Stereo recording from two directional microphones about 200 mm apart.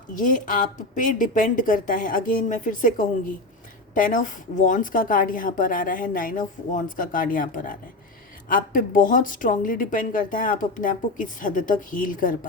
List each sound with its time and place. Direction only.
0.1 s a woman's voice: 40° left (ahead or behind)